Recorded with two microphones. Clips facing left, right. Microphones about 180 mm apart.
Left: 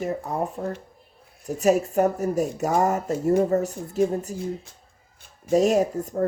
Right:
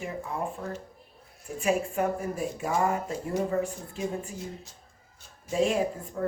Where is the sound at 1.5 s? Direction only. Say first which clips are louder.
Left 7 dB; 40° left (ahead or behind).